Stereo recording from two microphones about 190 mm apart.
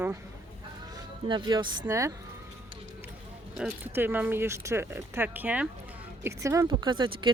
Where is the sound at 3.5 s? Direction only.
5° right (ahead or behind).